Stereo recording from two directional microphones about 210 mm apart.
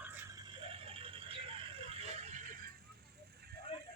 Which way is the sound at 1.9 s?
30° right (ahead or behind).